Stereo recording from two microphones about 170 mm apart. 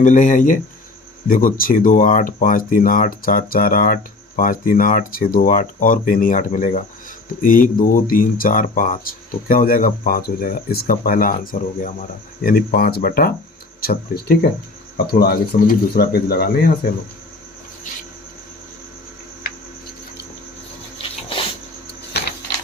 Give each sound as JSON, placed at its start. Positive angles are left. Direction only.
{"t": 0.0, "sound": "speech", "side_deg": 45}